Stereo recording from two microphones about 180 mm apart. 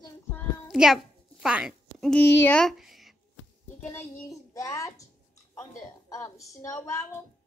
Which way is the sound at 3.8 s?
15° left (ahead or behind).